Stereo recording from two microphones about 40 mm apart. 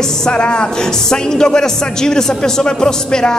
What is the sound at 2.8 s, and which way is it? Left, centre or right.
Speech, centre.